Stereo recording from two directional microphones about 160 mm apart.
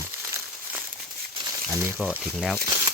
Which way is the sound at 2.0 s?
5° right (ahead or behind).